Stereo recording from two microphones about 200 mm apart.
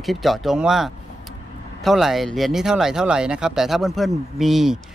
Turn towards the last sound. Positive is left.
turn(degrees=0)  # may be behind; listen again after turning